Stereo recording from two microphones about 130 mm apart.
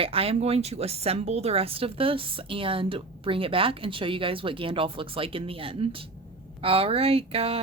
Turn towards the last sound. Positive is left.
turn(degrees=-50)  # may be behind; listen again after turning